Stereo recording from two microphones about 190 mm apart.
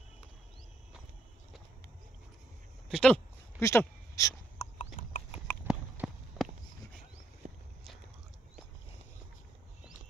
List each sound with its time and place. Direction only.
2.9 s a sound: 5° left (ahead or behind)
3.6 s speech: 15° left (ahead or behind)
4.6 s horse: 40° left (ahead or behind)
5.7 s clip-clop: centre (ahead or behind)
7.4 s walk: 45° right (ahead or behind)